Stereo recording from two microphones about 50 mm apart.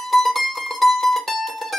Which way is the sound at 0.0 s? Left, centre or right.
Centre.